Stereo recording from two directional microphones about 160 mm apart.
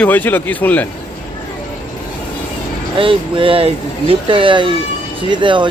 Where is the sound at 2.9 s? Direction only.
35° right (ahead or behind).